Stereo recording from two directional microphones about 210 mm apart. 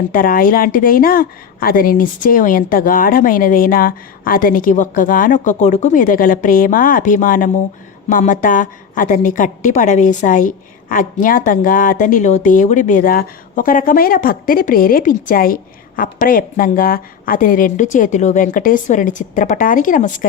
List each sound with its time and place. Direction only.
0.1 s a woman's voice: 40° left (ahead or behind)